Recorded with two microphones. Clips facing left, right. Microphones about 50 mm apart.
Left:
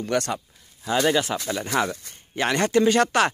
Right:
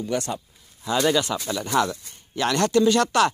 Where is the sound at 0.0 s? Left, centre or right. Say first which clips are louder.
Left 2 dB; left.